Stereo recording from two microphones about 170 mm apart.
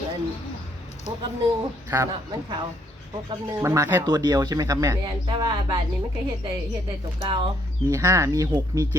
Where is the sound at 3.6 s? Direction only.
15° right (ahead or behind).